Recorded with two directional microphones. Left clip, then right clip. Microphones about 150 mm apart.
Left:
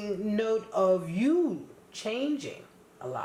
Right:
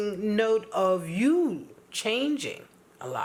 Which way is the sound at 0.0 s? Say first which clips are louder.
Right 4 dB; 30° right (ahead or behind).